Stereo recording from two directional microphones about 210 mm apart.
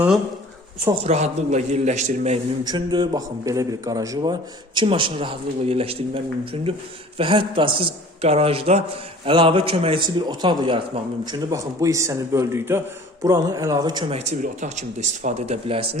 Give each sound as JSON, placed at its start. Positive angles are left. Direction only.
{"t": 0.9, "sound": "speech", "side_deg": -30}
{"t": 2.6, "sound": "a man's voice", "side_deg": -20}
{"t": 14.2, "sound": "speech", "side_deg": -35}